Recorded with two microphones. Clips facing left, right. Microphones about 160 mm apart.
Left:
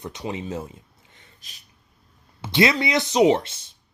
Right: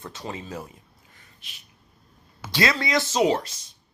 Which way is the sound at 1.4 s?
40° left (ahead or behind).